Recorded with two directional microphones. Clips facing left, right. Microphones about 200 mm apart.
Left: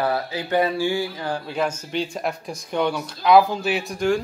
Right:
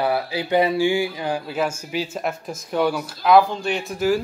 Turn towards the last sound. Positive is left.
turn(degrees=-5)  # may be behind; listen again after turning